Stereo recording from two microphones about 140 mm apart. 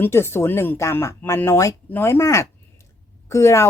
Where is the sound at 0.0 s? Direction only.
15° left (ahead or behind).